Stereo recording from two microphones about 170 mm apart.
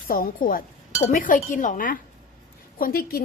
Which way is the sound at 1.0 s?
50° left (ahead or behind).